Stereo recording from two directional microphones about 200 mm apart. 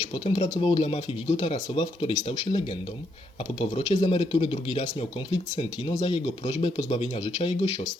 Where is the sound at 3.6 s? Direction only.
30° left (ahead or behind).